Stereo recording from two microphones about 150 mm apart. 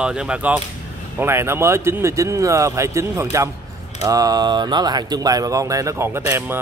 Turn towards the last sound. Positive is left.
turn(degrees=-15)  # may be behind; listen again after turning